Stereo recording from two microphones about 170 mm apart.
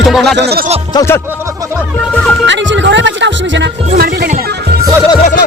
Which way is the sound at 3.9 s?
65° right (ahead or behind).